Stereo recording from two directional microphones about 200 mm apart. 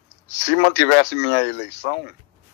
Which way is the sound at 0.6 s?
60° left (ahead or behind).